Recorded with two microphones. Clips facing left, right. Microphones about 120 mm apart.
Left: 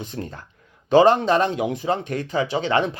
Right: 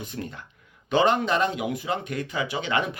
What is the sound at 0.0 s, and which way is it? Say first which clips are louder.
Speech: left 3 dB; 35° left (ahead or behind).